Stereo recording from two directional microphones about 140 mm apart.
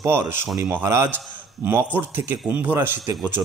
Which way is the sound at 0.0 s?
15° right (ahead or behind).